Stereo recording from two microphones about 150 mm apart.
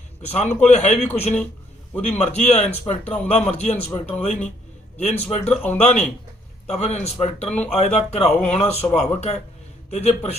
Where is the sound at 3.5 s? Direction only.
50° left (ahead or behind).